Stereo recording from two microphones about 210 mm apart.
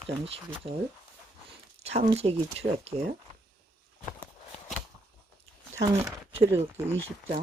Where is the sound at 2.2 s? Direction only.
30° right (ahead or behind).